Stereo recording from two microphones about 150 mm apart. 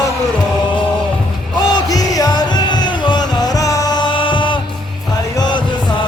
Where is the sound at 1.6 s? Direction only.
25° left (ahead or behind).